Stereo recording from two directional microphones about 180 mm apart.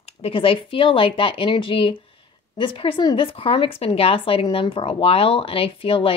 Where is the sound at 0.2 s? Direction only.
30° left (ahead or behind).